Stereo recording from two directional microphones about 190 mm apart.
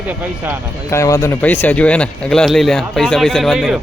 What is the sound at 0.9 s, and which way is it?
Speech, 15° left (ahead or behind).